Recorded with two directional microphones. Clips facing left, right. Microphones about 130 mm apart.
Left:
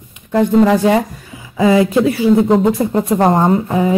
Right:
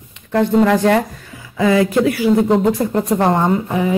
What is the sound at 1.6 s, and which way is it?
Speech, 25° left (ahead or behind).